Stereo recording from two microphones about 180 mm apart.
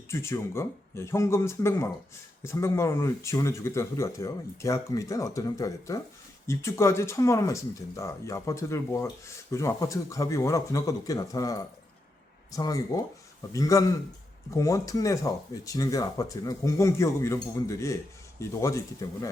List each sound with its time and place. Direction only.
0.1 s speech: 15° left (ahead or behind)